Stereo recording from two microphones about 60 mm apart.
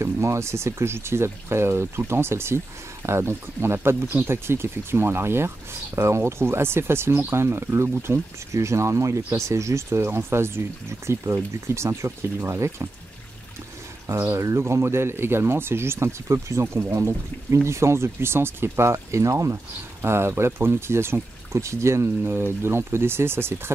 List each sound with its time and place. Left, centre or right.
0.0 s speech: right
14.4 s speech: right
22.2 s speech: right